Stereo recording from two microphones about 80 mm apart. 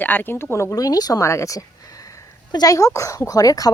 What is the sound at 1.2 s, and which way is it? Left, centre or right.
Speech, left.